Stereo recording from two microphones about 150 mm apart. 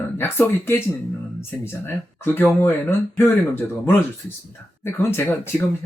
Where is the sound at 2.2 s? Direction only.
15° left (ahead or behind).